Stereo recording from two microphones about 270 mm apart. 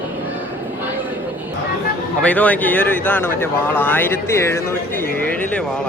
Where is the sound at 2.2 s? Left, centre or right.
Centre.